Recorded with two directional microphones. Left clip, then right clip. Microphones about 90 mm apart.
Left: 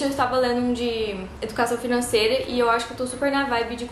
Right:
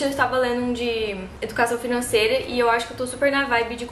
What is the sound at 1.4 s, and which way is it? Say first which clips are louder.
A woman's voice: right 2 dB; 5° left (ahead or behind).